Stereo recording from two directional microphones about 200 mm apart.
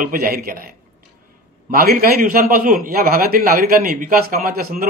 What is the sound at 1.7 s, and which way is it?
Speech, 50° right (ahead or behind).